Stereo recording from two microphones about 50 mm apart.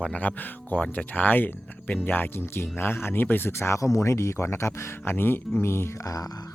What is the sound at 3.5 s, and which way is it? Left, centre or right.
Speech, left.